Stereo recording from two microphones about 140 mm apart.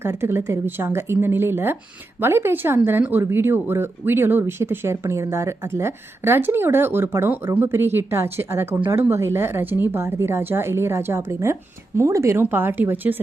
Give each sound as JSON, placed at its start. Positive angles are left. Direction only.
{"t": 0.0, "sound": "speech", "side_deg": -15}